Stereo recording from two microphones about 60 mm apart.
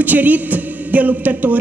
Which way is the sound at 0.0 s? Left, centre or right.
Right.